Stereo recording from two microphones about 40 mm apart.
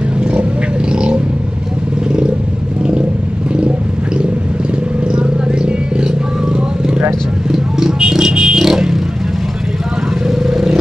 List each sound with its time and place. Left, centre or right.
0.2 s vehicle: right
5.0 s vehicle: right
7.5 s vehicle: centre
10.2 s vehicle: centre